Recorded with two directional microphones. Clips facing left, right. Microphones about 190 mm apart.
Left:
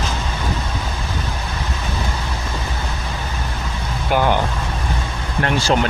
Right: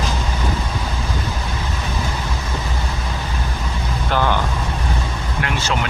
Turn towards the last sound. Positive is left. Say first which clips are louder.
# left 5 dB
turn(degrees=40)  # may be behind; listen again after turning